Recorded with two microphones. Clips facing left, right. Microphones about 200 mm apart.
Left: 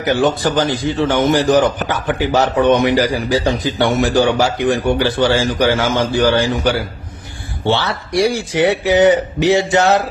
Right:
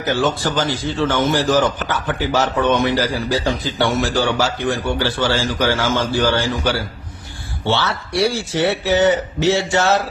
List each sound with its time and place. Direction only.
0.0 s a man's voice: 15° left (ahead or behind)